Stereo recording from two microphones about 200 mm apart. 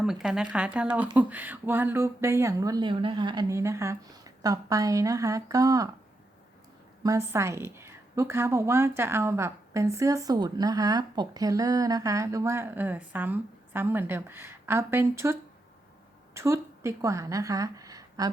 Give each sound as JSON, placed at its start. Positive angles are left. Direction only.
{"t": 0.0, "sound": "a woman's voice", "side_deg": -5}
{"t": 7.0, "sound": "a woman's voice", "side_deg": -15}